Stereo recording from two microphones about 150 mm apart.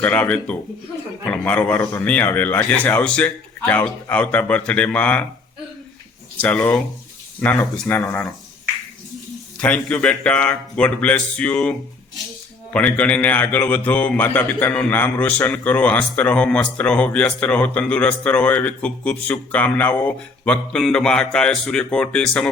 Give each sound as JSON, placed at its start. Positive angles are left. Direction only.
{"t": 0.0, "sound": "a man's voice", "side_deg": 10}
{"t": 6.3, "sound": "a man's voice", "side_deg": 10}